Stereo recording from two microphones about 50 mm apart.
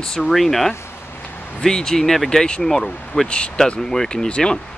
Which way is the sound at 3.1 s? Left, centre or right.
Left.